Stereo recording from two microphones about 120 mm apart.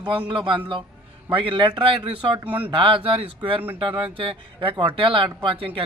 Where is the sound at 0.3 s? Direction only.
45° right (ahead or behind).